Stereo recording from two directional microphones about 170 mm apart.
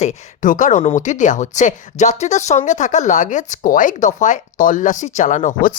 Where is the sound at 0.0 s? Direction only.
45° left (ahead or behind).